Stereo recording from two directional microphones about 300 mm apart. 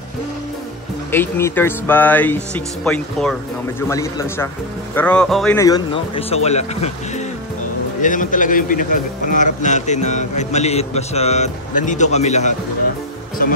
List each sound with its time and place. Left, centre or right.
1.1 s speech: centre; by 12.5 s left